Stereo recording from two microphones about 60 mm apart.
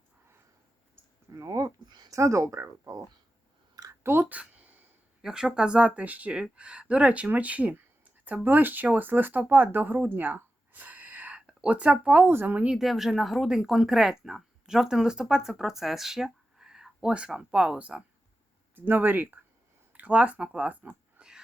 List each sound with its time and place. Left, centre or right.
1.3 s speech: right
4.0 s speech: right
4.3 s a sound: right
5.2 s speech: centre; by 10.1 s right
10.2 s a sound: right
11.3 s speech: centre
12.2 s speech: right
12.6 s speech: centre
18.9 s speech: right
20.8 s speech: right
21.2 s a sound: centre